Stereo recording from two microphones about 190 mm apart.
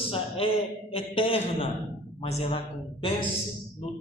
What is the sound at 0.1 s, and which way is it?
A man's voice, 30° left (ahead or behind).